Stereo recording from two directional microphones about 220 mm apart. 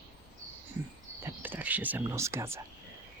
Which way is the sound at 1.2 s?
10° right (ahead or behind).